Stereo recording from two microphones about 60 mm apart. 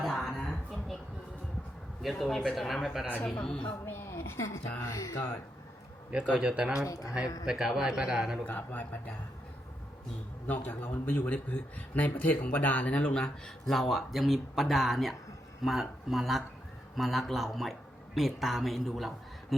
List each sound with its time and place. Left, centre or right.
0.0 s a sound: centre
2.0 s speech: centre
3.2 s speech: centre
3.8 s a sound: left
4.8 s speech: left
6.3 s a man's voice: centre
6.7 s speech: left
7.4 s a man's voice: centre
8.4 s speech: left
10.4 s speech: left
13.2 s speech: centre